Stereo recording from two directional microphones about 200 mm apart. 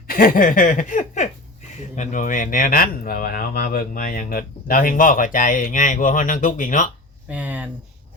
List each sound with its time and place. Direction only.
0.1 s speech: 45° left (ahead or behind)
7.3 s speech: 5° right (ahead or behind)